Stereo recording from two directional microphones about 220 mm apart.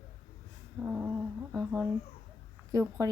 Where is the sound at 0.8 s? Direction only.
10° right (ahead or behind).